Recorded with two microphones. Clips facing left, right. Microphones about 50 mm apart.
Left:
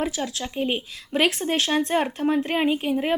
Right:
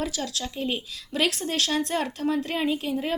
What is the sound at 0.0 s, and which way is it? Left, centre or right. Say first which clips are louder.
Speech: left 3 dB; left.